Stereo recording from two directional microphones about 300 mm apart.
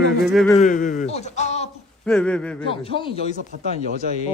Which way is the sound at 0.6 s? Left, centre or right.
Left.